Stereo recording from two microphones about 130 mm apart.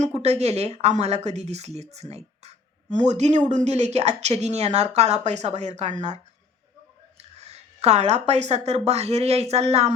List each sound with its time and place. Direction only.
0.0 s speech: 55° right (ahead or behind)
7.2 s a woman's voice: 55° right (ahead or behind)